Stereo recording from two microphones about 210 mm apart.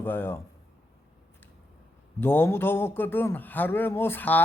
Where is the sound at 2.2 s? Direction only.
10° left (ahead or behind).